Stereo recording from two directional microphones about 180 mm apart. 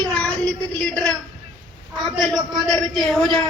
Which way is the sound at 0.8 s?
5° left (ahead or behind).